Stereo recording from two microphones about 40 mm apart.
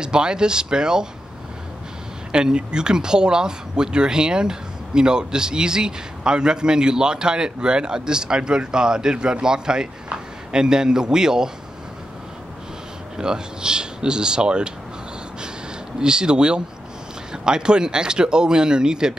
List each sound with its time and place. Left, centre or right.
0.0 s speech: right
2.3 s speech: right
13.2 s speech: centre
16.0 s speech: right